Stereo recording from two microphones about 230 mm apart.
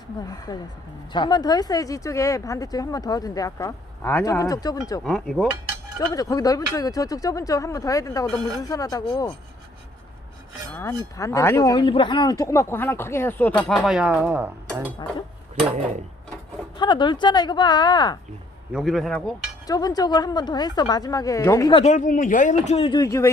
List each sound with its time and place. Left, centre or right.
0.3 s speech: centre
5.0 s a man's voice: centre
6.1 s speech: centre
10.8 s speech: centre
16.7 s speech: centre
18.7 s a man's voice: centre
19.6 s speech: centre